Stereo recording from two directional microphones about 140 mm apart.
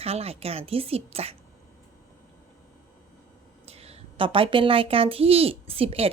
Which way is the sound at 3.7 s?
45° right (ahead or behind).